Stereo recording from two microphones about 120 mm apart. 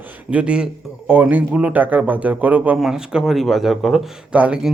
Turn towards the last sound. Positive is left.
turn(degrees=-10)  # may be behind; listen again after turning